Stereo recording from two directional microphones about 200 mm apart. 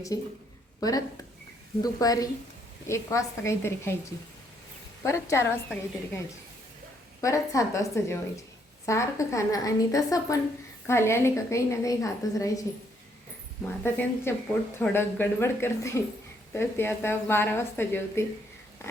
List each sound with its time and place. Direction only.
0.1 s a woman's voice: 15° left (ahead or behind)
5.0 s a woman's voice: 15° left (ahead or behind)
13.8 s a woman's voice: 10° left (ahead or behind)